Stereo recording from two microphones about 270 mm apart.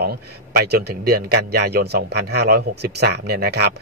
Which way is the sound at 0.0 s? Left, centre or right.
Right.